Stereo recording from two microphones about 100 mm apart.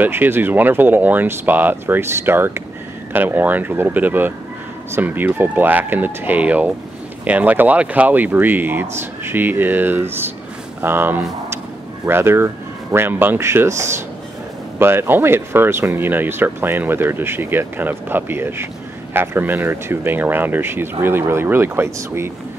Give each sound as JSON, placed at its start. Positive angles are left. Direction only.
{"t": 0.0, "sound": "speech", "side_deg": -20}